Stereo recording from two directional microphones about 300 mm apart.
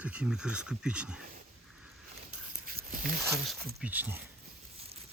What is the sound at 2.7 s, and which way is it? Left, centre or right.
Zipper, right.